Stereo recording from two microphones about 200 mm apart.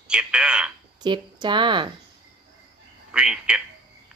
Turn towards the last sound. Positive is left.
turn(degrees=-5)  # may be behind; listen again after turning